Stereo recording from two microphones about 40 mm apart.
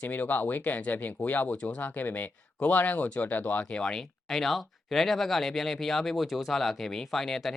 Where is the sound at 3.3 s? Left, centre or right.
Left.